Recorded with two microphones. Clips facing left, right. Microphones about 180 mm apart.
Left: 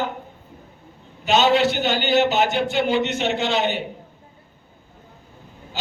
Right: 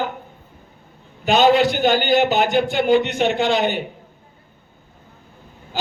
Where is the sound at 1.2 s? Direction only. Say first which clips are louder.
Right 3 dB; 50° right (ahead or behind).